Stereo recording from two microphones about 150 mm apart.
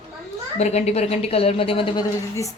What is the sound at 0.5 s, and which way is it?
A woman's voice, 45° left (ahead or behind).